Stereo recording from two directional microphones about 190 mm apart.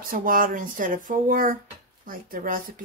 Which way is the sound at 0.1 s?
45° right (ahead or behind).